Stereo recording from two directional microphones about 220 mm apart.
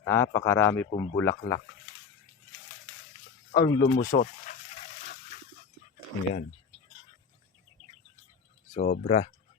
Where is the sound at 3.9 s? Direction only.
40° left (ahead or behind).